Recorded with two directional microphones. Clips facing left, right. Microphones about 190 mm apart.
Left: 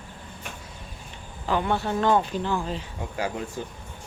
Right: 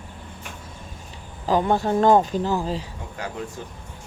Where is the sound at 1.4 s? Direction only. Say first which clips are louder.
Right 5 dB; 35° right (ahead or behind).